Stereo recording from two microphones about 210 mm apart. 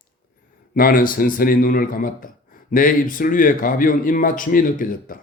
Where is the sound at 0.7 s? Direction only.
45° left (ahead or behind).